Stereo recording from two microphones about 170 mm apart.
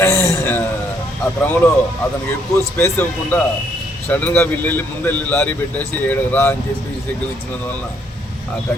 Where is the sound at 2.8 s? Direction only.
15° left (ahead or behind).